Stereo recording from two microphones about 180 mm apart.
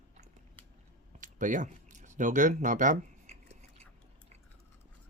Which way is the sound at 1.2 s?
45° right (ahead or behind).